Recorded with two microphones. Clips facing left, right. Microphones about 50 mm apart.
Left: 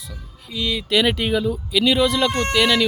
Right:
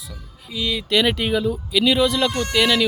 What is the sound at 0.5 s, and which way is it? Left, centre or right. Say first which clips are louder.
Speech: even; centre.